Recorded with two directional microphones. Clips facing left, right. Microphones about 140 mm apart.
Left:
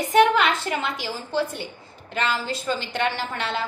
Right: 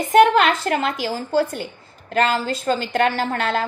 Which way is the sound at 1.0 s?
45° right (ahead or behind).